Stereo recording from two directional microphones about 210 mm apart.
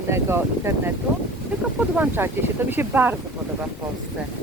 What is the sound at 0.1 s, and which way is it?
Speech, 10° right (ahead or behind).